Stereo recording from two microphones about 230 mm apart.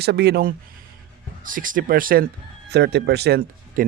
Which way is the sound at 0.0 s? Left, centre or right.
Right.